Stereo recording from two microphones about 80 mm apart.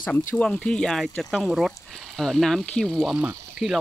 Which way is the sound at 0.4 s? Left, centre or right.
Centre.